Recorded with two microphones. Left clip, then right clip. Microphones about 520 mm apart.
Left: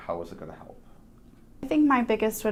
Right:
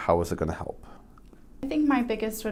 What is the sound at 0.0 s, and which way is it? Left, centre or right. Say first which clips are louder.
Speech: right 9 dB; right.